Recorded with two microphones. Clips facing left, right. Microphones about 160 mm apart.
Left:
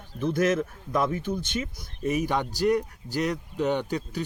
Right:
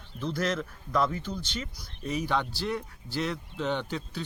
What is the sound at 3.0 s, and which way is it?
Speech, 40° left (ahead or behind).